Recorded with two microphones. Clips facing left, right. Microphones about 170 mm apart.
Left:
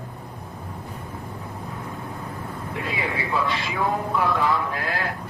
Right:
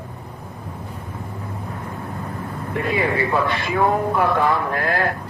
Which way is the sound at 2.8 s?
60° right (ahead or behind).